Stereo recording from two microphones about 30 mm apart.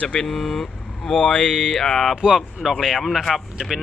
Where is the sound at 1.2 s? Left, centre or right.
Left.